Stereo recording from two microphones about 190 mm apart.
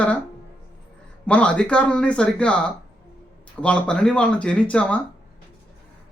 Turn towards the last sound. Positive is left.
turn(degrees=5)  # may be behind; listen again after turning